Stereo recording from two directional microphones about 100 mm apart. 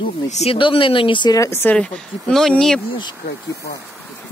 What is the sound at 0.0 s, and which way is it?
Speech, 65° left (ahead or behind).